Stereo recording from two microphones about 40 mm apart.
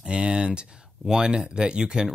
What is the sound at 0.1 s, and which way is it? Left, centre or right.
Speech, right.